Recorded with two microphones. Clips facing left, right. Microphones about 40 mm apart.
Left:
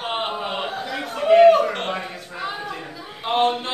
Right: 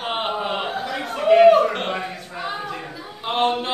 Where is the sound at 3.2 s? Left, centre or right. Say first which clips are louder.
Left 1 dB; centre.